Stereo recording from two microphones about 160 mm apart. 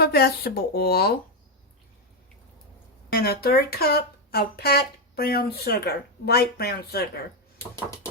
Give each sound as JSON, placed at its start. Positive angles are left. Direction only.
{"t": 0.0, "sound": "speech", "side_deg": 80}
{"t": 3.1, "sound": "speech", "side_deg": 75}